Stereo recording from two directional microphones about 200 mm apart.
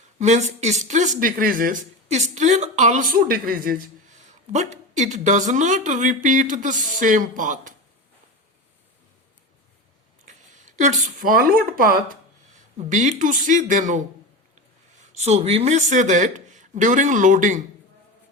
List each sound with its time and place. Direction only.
0.2 s speech: 35° right (ahead or behind)
10.2 s speech: 40° right (ahead or behind)
15.0 s speech: 35° right (ahead or behind)